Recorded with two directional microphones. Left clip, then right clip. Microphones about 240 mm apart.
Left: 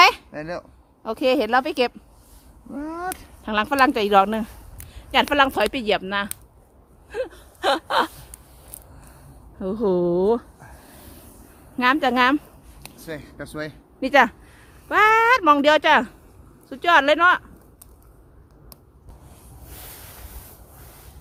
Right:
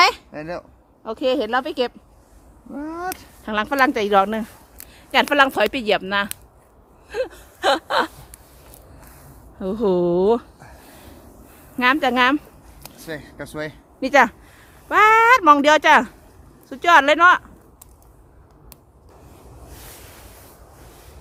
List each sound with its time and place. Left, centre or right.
0.0 s speech: centre
7.1 s gasp: centre
9.6 s speech: centre
11.8 s speech: centre